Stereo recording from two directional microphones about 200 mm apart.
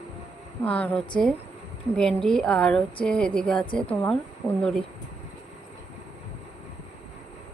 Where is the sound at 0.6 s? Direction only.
5° left (ahead or behind).